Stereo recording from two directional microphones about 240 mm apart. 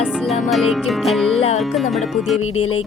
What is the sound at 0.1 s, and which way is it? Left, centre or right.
Music, centre.